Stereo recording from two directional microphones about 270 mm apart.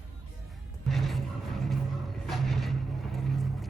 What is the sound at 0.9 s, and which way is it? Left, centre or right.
Music, centre.